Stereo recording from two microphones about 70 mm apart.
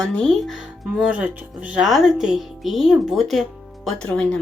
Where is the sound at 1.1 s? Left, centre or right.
Right.